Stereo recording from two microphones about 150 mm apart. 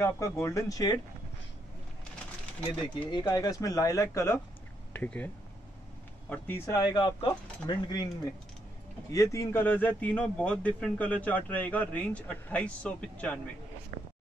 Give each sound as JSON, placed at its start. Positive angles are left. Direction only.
{"t": 0.0, "sound": "speech", "side_deg": 20}
{"t": 2.8, "sound": "speech", "side_deg": 30}
{"t": 9.1, "sound": "speech", "side_deg": 20}